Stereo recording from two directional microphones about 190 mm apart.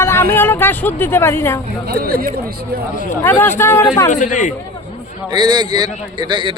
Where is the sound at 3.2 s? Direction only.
10° left (ahead or behind).